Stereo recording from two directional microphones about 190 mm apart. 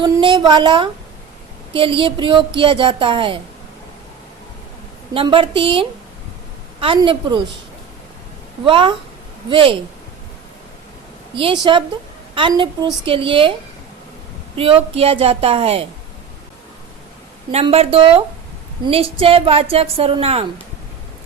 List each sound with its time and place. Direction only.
0.0 s speech: 25° right (ahead or behind)
5.1 s speech: 25° right (ahead or behind)
8.6 s speech: 25° right (ahead or behind)
11.3 s speech: 25° right (ahead or behind)
14.5 s a woman's voice: 30° right (ahead or behind)
17.5 s a woman's voice: 30° right (ahead or behind)